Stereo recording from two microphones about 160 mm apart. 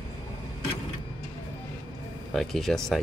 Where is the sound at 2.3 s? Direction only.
Centre (ahead or behind).